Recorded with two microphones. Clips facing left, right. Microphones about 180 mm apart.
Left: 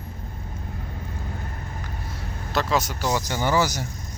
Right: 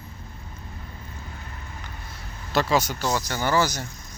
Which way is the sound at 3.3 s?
15° left (ahead or behind).